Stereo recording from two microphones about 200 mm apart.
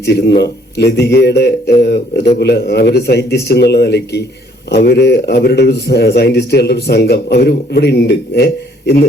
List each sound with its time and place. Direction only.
0.0 s a man's voice: 55° left (ahead or behind)